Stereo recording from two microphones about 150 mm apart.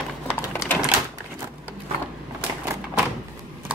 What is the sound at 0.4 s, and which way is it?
Typewriter, 15° left (ahead or behind).